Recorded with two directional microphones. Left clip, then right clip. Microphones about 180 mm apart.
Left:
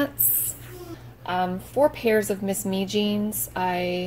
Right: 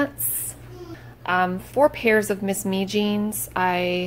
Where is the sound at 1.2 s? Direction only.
Centre (ahead or behind).